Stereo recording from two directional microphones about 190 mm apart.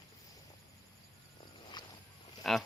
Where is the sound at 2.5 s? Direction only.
Centre (ahead or behind).